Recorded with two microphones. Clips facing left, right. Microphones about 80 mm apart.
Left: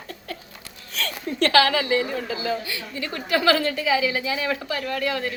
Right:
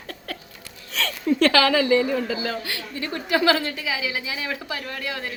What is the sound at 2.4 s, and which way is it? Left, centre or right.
Speech, right.